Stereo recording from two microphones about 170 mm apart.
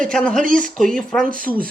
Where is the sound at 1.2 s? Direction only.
55° right (ahead or behind).